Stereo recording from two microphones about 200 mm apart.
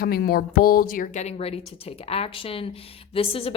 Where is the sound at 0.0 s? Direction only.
50° left (ahead or behind).